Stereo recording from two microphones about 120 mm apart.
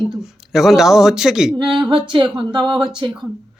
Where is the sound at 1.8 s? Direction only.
45° right (ahead or behind).